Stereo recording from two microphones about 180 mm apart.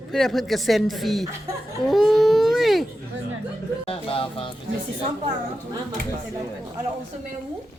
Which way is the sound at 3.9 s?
30° left (ahead or behind).